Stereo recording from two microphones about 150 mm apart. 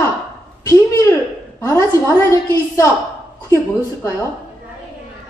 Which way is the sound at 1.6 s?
20° left (ahead or behind).